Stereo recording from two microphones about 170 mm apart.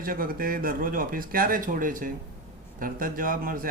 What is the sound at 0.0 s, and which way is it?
A man's voice, 55° right (ahead or behind).